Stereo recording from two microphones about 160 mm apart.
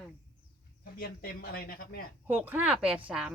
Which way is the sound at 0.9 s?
65° left (ahead or behind).